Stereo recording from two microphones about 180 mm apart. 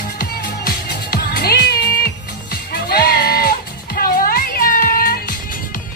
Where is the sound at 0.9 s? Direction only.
60° left (ahead or behind).